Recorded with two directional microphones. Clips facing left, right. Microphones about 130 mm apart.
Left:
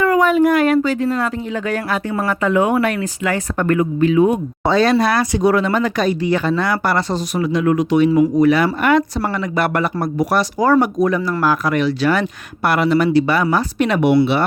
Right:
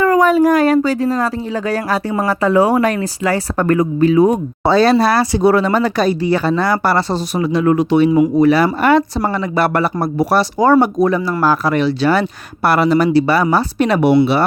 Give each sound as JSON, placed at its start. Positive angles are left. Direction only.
{"t": 0.0, "sound": "speech", "side_deg": -40}